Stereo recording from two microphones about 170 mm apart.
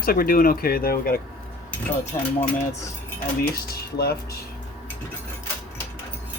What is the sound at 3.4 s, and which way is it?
Speech, 65° left (ahead or behind).